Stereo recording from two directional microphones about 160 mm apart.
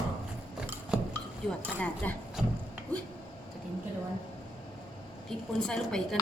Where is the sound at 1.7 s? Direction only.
10° left (ahead or behind).